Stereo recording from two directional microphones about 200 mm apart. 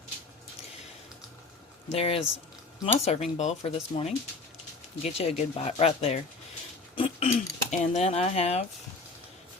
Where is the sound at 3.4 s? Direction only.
35° left (ahead or behind).